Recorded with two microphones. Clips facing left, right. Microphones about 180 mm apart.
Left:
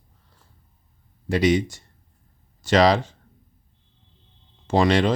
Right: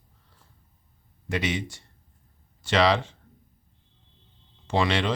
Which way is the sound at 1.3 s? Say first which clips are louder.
Left 9 dB; 40° left (ahead or behind).